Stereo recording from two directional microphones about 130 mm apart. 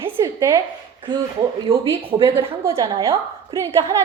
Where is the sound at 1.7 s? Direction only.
40° right (ahead or behind).